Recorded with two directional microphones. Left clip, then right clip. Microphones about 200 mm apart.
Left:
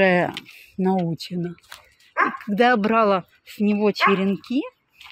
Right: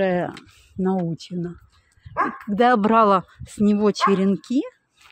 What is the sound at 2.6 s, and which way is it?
Speech, 15° right (ahead or behind).